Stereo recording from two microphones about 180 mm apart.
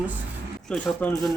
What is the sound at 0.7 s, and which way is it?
Speech, 5° left (ahead or behind).